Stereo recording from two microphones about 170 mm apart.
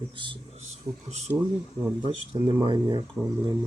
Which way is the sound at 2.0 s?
25° right (ahead or behind).